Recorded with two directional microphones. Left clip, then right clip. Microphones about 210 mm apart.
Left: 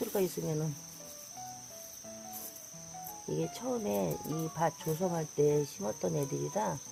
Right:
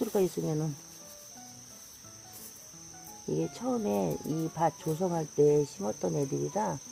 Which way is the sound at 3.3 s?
20° right (ahead or behind).